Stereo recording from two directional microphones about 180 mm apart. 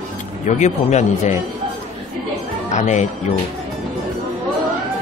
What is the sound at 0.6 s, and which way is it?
Speech, 40° left (ahead or behind).